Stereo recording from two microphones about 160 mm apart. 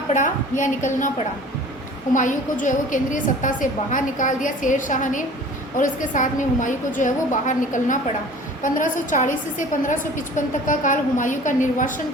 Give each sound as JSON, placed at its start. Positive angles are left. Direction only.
{"t": 0.1, "sound": "a woman's voice", "side_deg": 50}
{"t": 2.1, "sound": "a woman's voice", "side_deg": 55}